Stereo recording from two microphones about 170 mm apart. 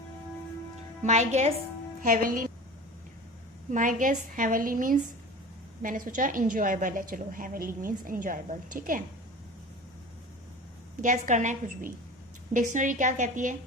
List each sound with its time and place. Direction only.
1.0 s a woman's voice: 40° right (ahead or behind)
2.0 s a woman's voice: 50° right (ahead or behind)
3.7 s a woman's voice: 50° right (ahead or behind)
11.0 s a woman's voice: 50° right (ahead or behind)